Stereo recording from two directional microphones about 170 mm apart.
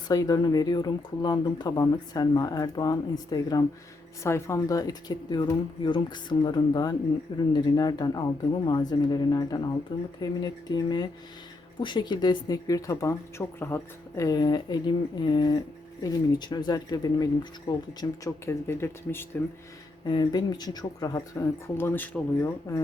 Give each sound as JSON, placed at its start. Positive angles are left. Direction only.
{"t": 0.1, "sound": "a woman's voice", "side_deg": 20}
{"t": 20.1, "sound": "a woman's voice", "side_deg": 25}